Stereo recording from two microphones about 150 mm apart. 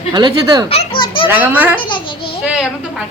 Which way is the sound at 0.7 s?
35° left (ahead or behind).